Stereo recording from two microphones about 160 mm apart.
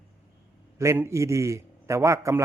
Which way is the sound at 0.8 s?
15° right (ahead or behind).